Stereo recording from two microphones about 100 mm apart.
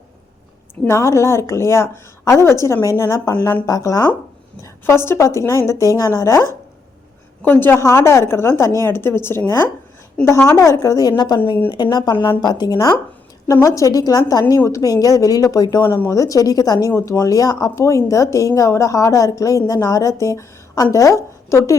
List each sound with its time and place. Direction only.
0.9 s a woman's voice: 30° left (ahead or behind)
7.4 s a woman's voice: 20° left (ahead or behind)